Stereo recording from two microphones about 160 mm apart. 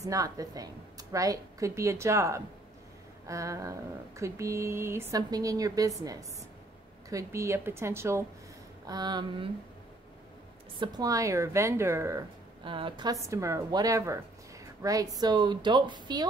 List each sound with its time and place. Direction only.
0.0 s a woman's voice: 20° right (ahead or behind)
10.8 s a woman's voice: 25° right (ahead or behind)
12.6 s a woman's voice: 30° right (ahead or behind)